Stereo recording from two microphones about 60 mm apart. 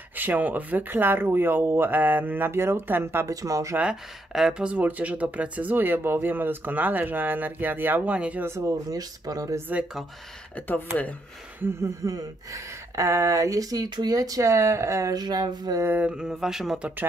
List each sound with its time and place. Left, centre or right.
0.1 s speech: right
3.3 s speech: right
3.9 s speech: centre
4.6 s speech: right
8.5 s speech: right
10.5 s speech: left
11.8 s speech: right
14.5 s speech: right
15.1 s speech: right
16.1 s a sound: centre